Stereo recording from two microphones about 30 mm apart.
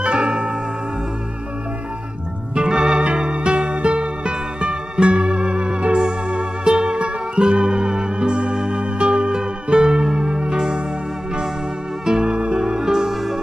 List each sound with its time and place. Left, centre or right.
0.0 s music: right
2.5 s organ: right
3.0 s music: right
12.2 s music: right
12.5 s music: right